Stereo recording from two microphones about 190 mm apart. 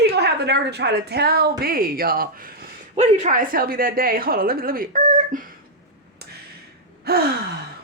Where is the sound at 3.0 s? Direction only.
35° right (ahead or behind).